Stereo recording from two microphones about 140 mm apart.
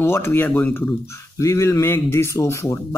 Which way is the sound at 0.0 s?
15° left (ahead or behind).